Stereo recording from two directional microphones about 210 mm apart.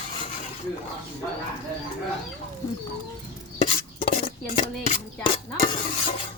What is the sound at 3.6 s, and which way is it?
Chopping, 35° left (ahead or behind).